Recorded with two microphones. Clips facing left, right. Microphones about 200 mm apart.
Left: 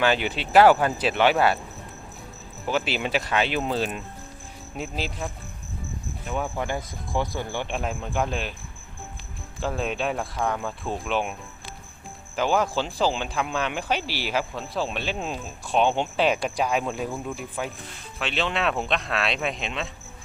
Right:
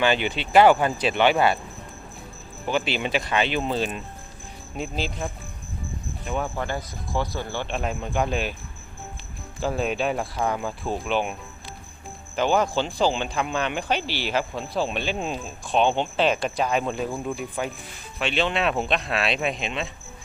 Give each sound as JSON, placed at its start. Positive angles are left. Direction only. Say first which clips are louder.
{"t": 0.0, "sound": "speech", "louder": "right 1 dB", "side_deg": 5}
{"t": 2.6, "sound": "speech", "louder": "right 1 dB", "side_deg": 5}
{"t": 6.6, "sound": "speech", "louder": "even", "side_deg": 15}
{"t": 7.8, "sound": "speech", "louder": "right 3 dB", "side_deg": 0}
{"t": 9.6, "sound": "speech", "louder": "right 2 dB", "side_deg": -5}
{"t": 12.4, "sound": "speech", "louder": "right 2 dB", "side_deg": 5}
{"t": 17.1, "sound": "speech", "louder": "right 3 dB", "side_deg": 0}